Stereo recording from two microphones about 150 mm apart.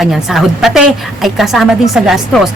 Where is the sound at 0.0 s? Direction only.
Centre (ahead or behind).